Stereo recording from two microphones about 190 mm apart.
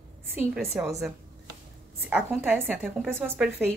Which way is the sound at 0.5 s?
Centre (ahead or behind).